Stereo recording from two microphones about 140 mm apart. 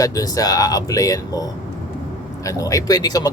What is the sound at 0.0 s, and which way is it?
Speech, 25° left (ahead or behind).